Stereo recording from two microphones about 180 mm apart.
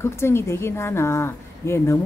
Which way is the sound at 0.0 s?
15° left (ahead or behind).